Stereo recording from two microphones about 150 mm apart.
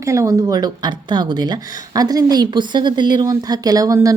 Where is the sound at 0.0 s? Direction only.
20° right (ahead or behind).